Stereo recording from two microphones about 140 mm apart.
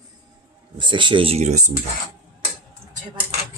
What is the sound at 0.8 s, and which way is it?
Speech, 35° right (ahead or behind).